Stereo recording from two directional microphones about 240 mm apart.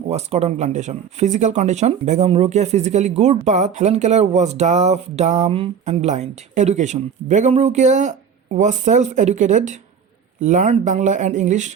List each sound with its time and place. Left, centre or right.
0.1 s speech: right